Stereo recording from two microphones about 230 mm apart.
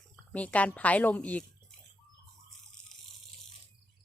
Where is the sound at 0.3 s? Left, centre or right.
Centre.